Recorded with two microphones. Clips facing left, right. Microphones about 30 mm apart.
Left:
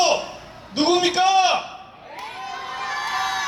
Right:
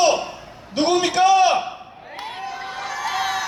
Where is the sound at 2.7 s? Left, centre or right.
Left.